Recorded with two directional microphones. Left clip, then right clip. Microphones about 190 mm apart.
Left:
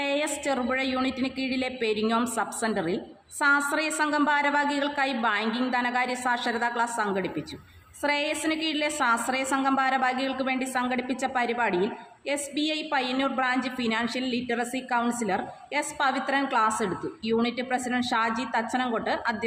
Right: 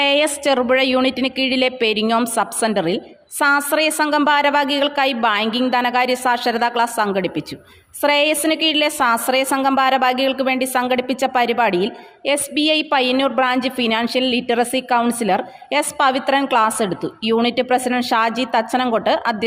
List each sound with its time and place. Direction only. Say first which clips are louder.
0.0 s a woman's voice: right 11 dB; 50° right (ahead or behind)